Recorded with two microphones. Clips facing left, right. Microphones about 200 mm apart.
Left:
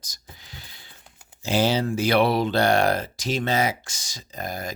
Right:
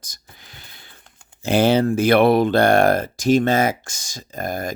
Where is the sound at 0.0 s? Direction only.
55° right (ahead or behind).